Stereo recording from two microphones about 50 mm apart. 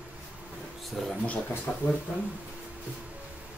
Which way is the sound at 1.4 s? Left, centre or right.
Left.